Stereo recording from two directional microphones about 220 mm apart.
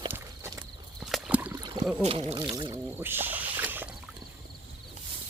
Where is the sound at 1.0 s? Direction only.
5° right (ahead or behind).